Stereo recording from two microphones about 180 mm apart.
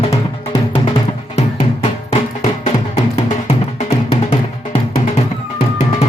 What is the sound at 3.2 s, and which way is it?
Music, 35° left (ahead or behind).